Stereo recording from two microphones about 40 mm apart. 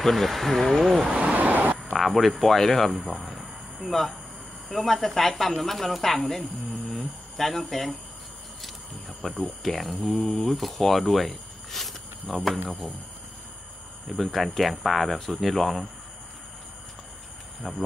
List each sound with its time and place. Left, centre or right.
0.0 s speech: centre
1.2 s vehicle: right
2.0 s speech: centre
9.2 s speech: centre
11.7 s insect: centre
12.6 s speech: centre
14.0 s speech: centre
17.6 s cricket: centre